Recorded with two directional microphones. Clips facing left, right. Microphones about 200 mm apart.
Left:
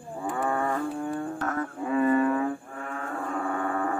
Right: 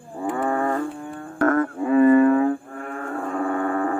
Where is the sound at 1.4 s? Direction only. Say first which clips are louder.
Right 10 dB; 60° right (ahead or behind).